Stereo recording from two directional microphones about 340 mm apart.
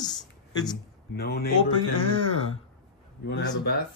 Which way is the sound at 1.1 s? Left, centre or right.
Left.